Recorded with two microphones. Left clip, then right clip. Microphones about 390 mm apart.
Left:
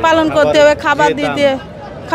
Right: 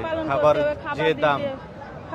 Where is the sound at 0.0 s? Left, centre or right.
Left.